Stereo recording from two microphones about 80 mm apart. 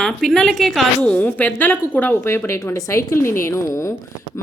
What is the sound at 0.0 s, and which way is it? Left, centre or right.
Speech, centre.